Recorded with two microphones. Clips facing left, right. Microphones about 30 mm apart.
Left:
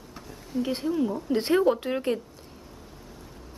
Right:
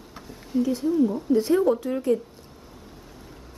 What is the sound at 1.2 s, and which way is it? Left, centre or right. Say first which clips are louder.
Speech: even; left.